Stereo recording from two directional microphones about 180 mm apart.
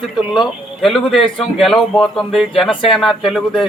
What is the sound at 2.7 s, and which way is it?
Speech, 25° left (ahead or behind).